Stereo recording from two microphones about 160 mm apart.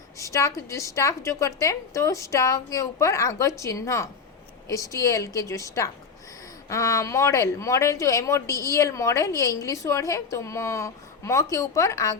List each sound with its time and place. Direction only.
0.2 s a woman's voice: 20° left (ahead or behind)